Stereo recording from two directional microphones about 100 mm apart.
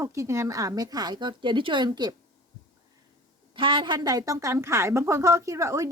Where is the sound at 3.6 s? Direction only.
55° right (ahead or behind); by 5.9 s 30° right (ahead or behind).